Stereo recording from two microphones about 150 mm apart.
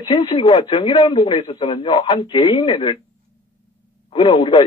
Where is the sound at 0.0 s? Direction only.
30° left (ahead or behind).